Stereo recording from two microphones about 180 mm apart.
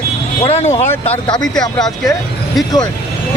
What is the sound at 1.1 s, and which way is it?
Speech, 25° left (ahead or behind).